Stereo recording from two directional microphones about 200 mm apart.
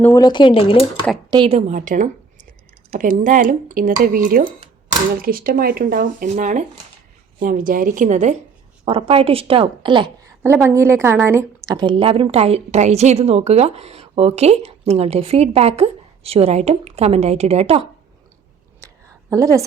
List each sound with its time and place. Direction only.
0.0 s speech: 15° left (ahead or behind)
1.3 s a woman's voice: 25° right (ahead or behind)
10.4 s a woman's voice: 10° right (ahead or behind); by 17.8 s 30° right (ahead or behind)
19.3 s a woman's voice: 15° right (ahead or behind)